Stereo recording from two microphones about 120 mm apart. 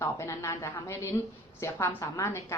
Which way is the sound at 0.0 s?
25° left (ahead or behind).